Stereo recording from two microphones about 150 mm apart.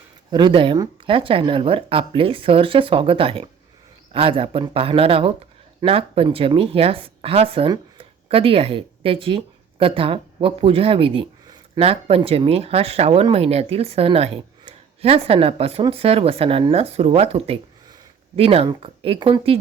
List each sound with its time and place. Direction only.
0.3 s a woman's voice: 30° right (ahead or behind)